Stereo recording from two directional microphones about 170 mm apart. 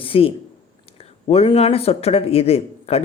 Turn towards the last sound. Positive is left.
turn(degrees=35)  # may be behind; listen again after turning